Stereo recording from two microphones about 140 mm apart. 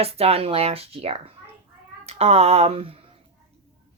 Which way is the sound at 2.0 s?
50° right (ahead or behind).